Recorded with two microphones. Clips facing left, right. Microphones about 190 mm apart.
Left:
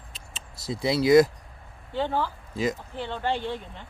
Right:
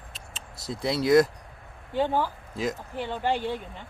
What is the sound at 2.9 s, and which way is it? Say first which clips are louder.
Speech: right 1 dB; 10° right (ahead or behind).